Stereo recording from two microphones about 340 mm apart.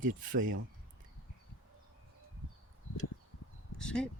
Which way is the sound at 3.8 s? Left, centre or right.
Centre.